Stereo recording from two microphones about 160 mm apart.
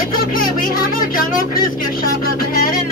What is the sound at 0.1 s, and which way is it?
Speech, 65° left (ahead or behind).